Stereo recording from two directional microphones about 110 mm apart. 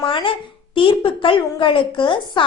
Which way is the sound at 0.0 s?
50° left (ahead or behind).